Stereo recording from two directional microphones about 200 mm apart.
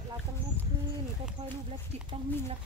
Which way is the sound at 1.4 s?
35° right (ahead or behind).